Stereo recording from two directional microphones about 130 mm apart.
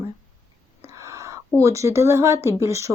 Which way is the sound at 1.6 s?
25° right (ahead or behind).